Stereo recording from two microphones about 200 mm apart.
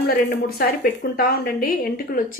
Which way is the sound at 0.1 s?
50° left (ahead or behind).